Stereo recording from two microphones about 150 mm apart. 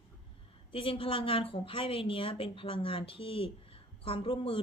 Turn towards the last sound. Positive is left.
turn(degrees=35)  # may be behind; listen again after turning